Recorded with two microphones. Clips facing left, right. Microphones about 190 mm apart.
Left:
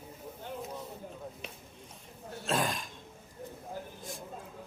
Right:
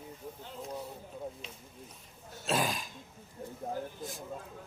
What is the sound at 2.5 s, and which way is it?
Throat clearing, centre (ahead or behind).